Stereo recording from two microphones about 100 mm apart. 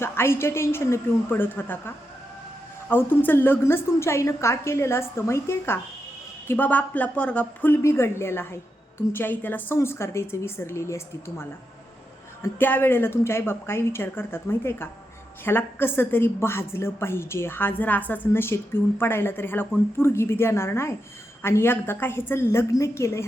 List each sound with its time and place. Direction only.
0.0 s a woman's voice: 25° left (ahead or behind)
2.9 s a woman's voice: 20° left (ahead or behind)